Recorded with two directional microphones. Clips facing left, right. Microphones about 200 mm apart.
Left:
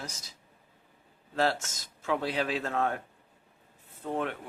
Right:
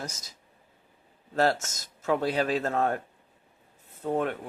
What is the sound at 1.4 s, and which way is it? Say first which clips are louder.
Speech: right 3 dB; 45° right (ahead or behind).